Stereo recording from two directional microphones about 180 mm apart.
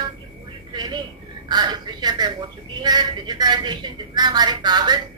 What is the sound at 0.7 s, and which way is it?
Vehicle, 25° right (ahead or behind).